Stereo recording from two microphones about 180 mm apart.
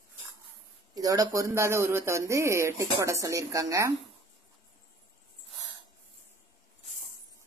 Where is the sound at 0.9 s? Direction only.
20° right (ahead or behind).